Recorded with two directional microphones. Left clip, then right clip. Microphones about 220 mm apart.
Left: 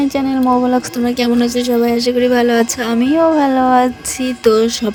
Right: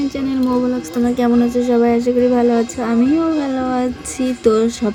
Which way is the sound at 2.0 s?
50° left (ahead or behind).